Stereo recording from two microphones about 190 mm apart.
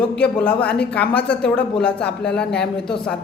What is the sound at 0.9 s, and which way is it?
Speech, 5° left (ahead or behind).